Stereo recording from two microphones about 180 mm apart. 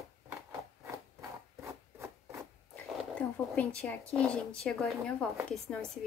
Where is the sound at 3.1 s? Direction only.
5° left (ahead or behind).